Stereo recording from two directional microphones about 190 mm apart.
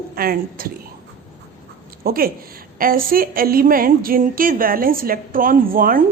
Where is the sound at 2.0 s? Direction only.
50° right (ahead or behind).